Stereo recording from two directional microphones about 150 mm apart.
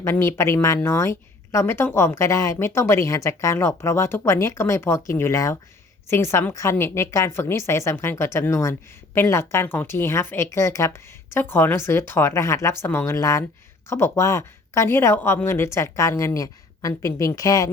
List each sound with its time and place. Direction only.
0.0 s speech: 15° left (ahead or behind)